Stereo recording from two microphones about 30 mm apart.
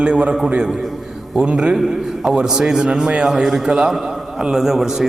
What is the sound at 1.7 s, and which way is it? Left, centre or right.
Speech, centre.